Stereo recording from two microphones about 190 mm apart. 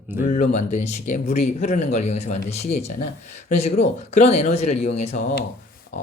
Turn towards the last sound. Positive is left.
turn(degrees=50)  # may be behind; listen again after turning